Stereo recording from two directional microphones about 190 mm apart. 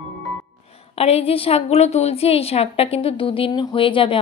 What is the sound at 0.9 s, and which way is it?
A woman's voice, 30° left (ahead or behind).